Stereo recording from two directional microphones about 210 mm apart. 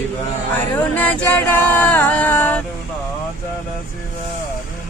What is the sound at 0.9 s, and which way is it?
Singing, 5° left (ahead or behind).